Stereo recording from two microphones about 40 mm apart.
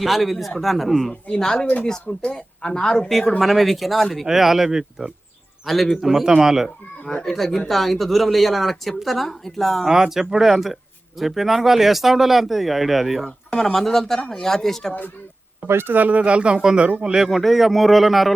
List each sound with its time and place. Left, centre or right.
0.0 s speech: centre
1.3 s speech: centre
3.1 s speech: centre
5.6 s speech: centre
6.0 s speech: centre
7.0 s speech: left
7.3 s speech: centre
9.8 s speech: centre
15.6 s speech: right
15.9 s speech: right; by 17.2 s centre
17.2 s speech: centre